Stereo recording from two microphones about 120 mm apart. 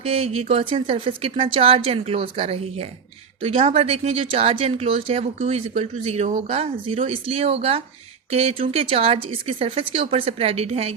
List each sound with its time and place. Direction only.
0.0 s a woman's voice: 55° right (ahead or behind)